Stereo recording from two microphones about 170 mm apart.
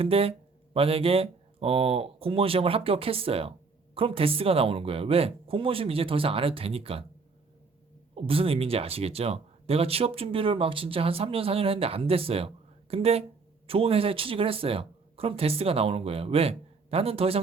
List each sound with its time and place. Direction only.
0.0 s speech: 35° right (ahead or behind)
8.1 s speech: 35° right (ahead or behind)